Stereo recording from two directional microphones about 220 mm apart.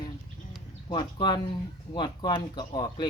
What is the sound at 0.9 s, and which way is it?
Speech, 20° left (ahead or behind).